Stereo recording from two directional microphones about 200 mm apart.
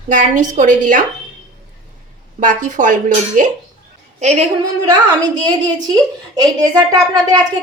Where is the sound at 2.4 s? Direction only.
40° right (ahead or behind).